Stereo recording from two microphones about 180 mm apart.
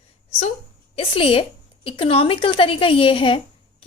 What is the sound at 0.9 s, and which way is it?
A woman's voice, 30° left (ahead or behind).